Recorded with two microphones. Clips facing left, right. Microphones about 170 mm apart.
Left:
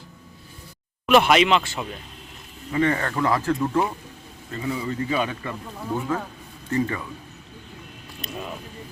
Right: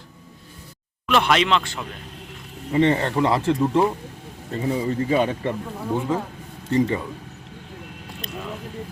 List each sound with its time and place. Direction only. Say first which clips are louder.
1.0 s speech: left 3 dB; 10° left (ahead or behind)
2.7 s speech: right 4 dB; 25° right (ahead or behind)
4.5 s speech: right 4 dB; 35° right (ahead or behind)